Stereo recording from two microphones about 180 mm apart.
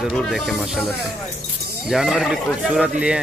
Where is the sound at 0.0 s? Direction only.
Centre (ahead or behind).